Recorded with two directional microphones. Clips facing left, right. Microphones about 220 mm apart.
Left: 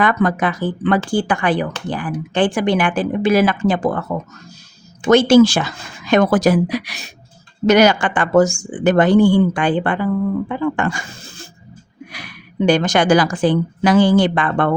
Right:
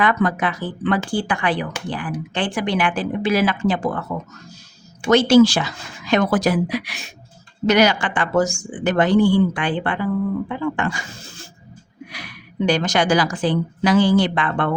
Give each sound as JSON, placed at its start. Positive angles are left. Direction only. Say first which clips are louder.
{"t": 0.0, "sound": "a woman's voice", "louder": "left 3 dB", "side_deg": 45}
{"t": 5.1, "sound": "a woman's voice", "louder": "left 2 dB", "side_deg": 50}